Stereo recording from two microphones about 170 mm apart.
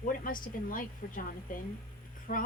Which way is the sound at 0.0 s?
55° left (ahead or behind).